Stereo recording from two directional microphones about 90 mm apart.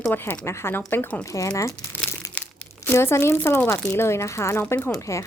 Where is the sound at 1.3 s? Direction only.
35° left (ahead or behind).